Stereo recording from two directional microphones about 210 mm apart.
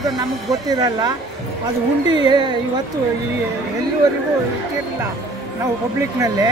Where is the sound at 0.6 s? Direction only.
20° right (ahead or behind).